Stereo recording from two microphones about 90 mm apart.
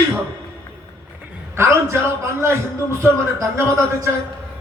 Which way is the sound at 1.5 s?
30° right (ahead or behind).